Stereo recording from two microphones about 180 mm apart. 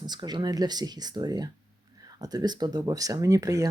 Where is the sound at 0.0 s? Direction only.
25° right (ahead or behind).